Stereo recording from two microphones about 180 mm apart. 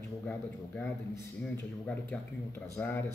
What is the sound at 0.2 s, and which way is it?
Speech, 10° left (ahead or behind).